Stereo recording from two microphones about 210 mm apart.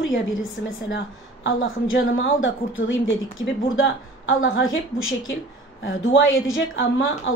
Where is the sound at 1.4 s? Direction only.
70° left (ahead or behind).